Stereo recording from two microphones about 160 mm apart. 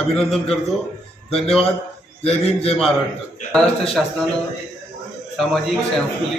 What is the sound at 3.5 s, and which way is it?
Speech, 5° left (ahead or behind).